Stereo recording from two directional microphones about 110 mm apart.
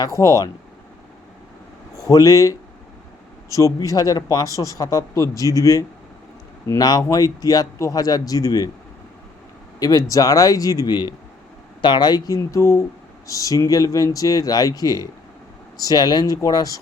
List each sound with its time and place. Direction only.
0.0 s speech: 30° left (ahead or behind)
2.0 s speech: 30° left (ahead or behind)
9.8 s speech: 30° left (ahead or behind)